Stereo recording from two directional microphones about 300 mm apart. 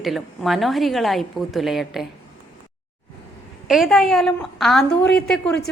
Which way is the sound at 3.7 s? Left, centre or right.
Centre.